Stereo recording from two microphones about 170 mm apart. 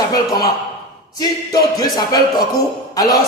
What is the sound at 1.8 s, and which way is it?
Speech, 25° left (ahead or behind).